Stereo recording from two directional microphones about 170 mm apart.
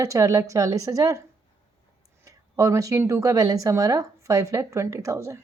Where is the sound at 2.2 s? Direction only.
20° right (ahead or behind).